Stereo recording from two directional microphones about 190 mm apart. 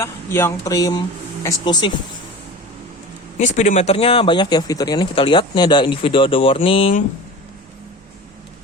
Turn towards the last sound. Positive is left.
turn(degrees=30)  # may be behind; listen again after turning